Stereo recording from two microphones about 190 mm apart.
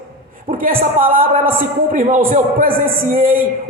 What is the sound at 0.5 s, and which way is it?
A man's voice, 50° right (ahead or behind).